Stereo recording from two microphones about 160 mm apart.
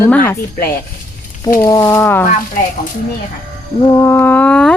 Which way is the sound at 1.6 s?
20° left (ahead or behind).